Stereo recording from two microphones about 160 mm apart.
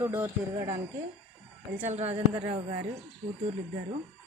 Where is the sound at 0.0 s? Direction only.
15° right (ahead or behind).